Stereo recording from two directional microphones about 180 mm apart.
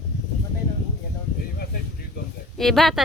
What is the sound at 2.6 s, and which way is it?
Speech, centre (ahead or behind).